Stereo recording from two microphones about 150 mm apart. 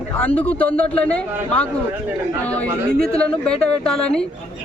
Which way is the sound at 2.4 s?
10° left (ahead or behind).